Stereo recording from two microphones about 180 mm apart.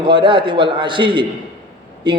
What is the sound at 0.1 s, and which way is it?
A man's voice, 30° right (ahead or behind).